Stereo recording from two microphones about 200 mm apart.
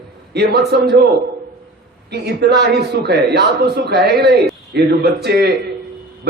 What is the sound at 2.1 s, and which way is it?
A man's voice, 55° right (ahead or behind).